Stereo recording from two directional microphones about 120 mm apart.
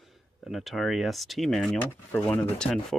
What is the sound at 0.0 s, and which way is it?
Speech, centre (ahead or behind).